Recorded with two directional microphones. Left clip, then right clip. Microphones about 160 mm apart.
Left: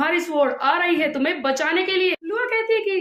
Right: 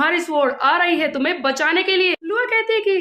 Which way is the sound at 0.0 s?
25° right (ahead or behind).